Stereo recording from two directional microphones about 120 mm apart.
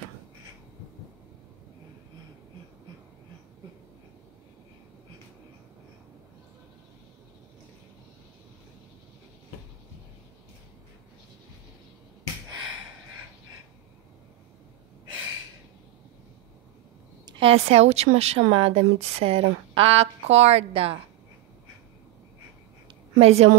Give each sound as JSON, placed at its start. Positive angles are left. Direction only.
{"t": 17.4, "sound": "a woman's voice", "side_deg": -55}
{"t": 23.1, "sound": "a woman's voice", "side_deg": -60}